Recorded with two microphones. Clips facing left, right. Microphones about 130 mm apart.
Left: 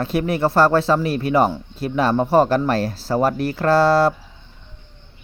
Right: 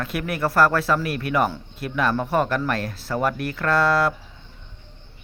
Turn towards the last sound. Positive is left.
turn(degrees=30)  # may be behind; listen again after turning